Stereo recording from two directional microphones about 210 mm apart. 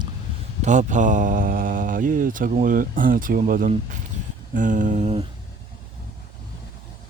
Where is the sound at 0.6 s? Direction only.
35° right (ahead or behind).